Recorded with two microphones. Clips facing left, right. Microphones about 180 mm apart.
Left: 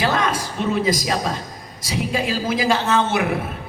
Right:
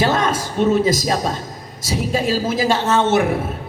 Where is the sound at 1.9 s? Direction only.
45° right (ahead or behind).